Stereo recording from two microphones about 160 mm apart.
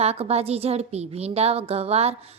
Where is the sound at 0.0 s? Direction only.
40° right (ahead or behind).